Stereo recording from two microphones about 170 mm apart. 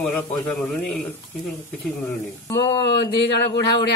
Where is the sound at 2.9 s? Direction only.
80° left.